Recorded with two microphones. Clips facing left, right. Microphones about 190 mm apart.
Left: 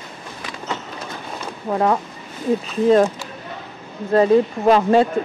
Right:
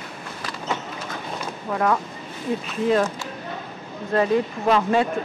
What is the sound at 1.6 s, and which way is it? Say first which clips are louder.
Speech: left 4 dB; 25° left (ahead or behind).